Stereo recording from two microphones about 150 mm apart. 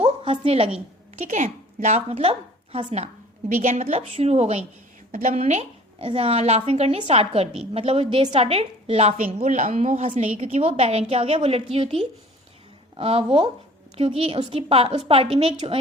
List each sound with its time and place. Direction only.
0.0 s a sound: 40° right (ahead or behind)
1.1 s a woman's voice: 50° right (ahead or behind)
2.0 s a woman's voice: 40° right (ahead or behind)